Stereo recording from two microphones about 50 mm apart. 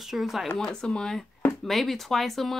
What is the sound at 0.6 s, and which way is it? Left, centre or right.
Speech, centre.